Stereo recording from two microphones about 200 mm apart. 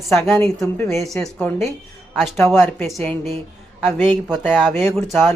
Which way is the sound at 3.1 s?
30° right (ahead or behind).